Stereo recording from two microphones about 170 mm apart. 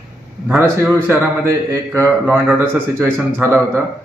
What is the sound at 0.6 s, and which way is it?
A man's voice, 15° right (ahead or behind).